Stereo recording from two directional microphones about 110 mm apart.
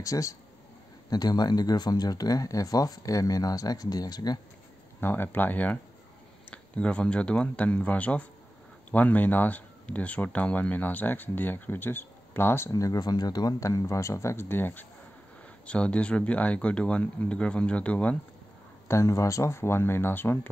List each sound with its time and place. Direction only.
0.0 s speech: 30° left (ahead or behind)
5.0 s speech: 20° left (ahead or behind)
18.9 s speech: 25° left (ahead or behind)